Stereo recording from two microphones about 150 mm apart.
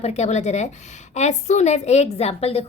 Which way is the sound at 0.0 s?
45° left (ahead or behind).